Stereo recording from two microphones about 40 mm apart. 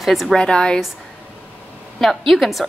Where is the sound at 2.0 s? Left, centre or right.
Centre.